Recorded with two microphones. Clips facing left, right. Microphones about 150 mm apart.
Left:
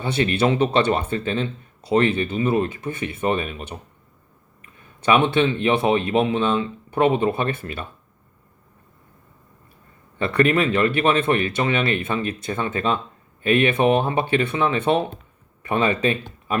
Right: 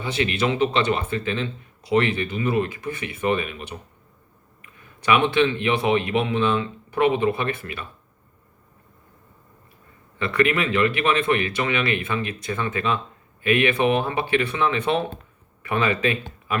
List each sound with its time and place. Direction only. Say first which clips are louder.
0.0 s speech: left 3 dB; 35° left (ahead or behind)
10.2 s speech: left 3 dB; 35° left (ahead or behind)